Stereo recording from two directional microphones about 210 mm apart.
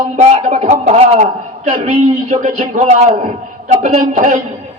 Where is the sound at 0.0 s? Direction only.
30° right (ahead or behind).